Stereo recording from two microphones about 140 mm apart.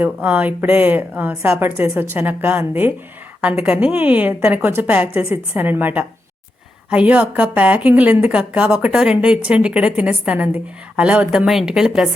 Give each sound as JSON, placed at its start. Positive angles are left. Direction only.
{"t": 0.0, "sound": "a woman's voice", "side_deg": -10}